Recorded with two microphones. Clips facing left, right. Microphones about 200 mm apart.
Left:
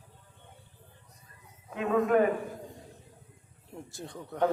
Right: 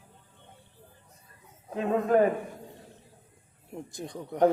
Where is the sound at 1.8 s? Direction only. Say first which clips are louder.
Right 1 dB; 35° right (ahead or behind).